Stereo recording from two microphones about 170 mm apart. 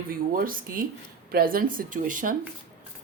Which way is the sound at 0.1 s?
55° right (ahead or behind).